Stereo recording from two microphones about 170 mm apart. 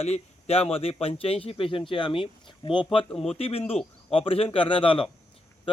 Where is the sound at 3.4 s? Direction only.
35° left (ahead or behind).